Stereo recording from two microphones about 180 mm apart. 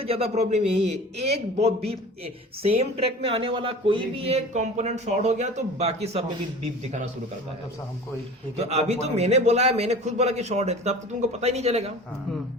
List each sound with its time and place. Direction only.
0.0 s speech: 35° right (ahead or behind)
8.5 s speech: 35° right (ahead or behind)